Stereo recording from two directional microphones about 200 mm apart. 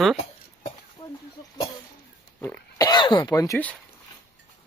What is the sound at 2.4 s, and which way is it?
Speech, 15° left (ahead or behind).